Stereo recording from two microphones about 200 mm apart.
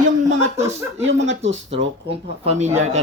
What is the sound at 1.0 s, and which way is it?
Speech, 70° right (ahead or behind).